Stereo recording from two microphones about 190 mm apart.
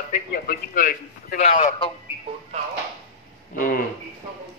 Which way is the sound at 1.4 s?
35° left (ahead or behind).